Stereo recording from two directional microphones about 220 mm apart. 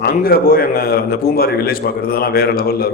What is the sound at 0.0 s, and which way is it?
A man's voice, 40° left (ahead or behind).